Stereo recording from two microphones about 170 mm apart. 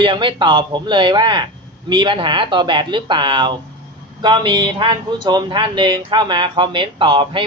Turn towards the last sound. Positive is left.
turn(degrees=-30)  # may be behind; listen again after turning